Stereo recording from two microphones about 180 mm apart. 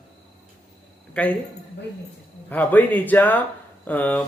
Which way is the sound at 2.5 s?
10° left (ahead or behind).